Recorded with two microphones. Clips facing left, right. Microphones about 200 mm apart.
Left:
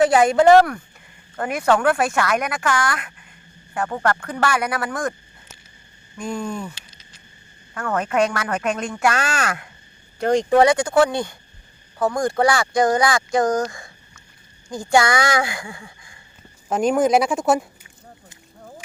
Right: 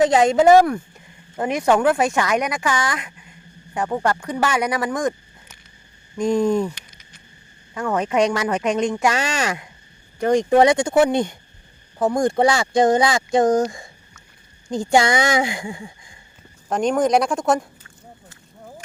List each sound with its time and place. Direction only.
0.0 s a woman's voice: 20° right (ahead or behind)
6.1 s speech: 5° left (ahead or behind)
6.6 s a sound: 15° right (ahead or behind)
7.7 s a woman's voice: 15° right (ahead or behind)
16.6 s speech: 5° left (ahead or behind)